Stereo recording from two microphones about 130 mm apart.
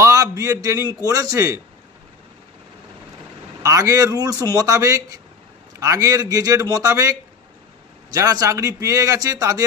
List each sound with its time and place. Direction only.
0.0 s a man's voice: 25° right (ahead or behind)
3.6 s a man's voice: 25° right (ahead or behind)